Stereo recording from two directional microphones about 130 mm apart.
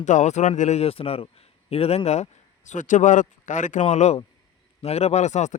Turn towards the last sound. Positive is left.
turn(degrees=65)  # may be behind; listen again after turning